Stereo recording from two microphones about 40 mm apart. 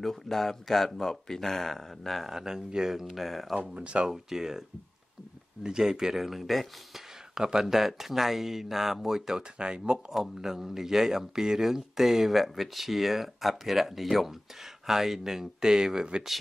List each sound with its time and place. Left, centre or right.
0.0 s speech: centre
2.3 s speech: centre
3.6 s speech: right
4.0 s speech: centre
6.1 s speech: centre
7.3 s speech: centre
9.6 s speech: right
10.1 s speech: centre